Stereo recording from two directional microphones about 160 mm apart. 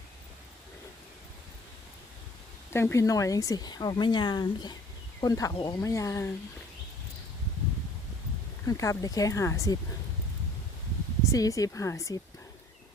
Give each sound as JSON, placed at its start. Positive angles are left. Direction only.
{"t": 2.6, "sound": "speech", "side_deg": 15}
{"t": 8.6, "sound": "speech", "side_deg": 20}
{"t": 11.3, "sound": "speech", "side_deg": 20}